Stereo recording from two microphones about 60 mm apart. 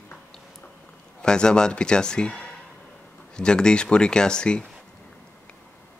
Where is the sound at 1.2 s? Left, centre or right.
Centre.